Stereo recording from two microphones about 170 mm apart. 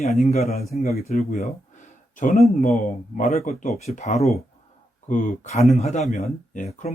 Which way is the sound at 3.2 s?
40° left (ahead or behind).